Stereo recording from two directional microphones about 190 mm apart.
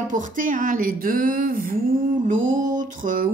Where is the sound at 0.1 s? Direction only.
45° right (ahead or behind).